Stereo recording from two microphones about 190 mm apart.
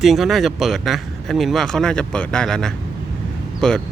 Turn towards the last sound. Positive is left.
turn(degrees=5)  # may be behind; listen again after turning